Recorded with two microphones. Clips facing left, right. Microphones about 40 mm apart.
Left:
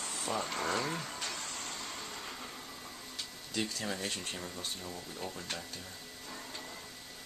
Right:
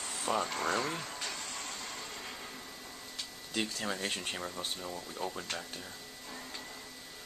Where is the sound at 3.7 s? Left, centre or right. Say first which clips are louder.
Right 2 dB; centre.